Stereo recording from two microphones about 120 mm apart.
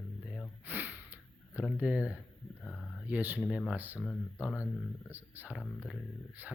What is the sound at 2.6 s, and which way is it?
Speech, 15° left (ahead or behind).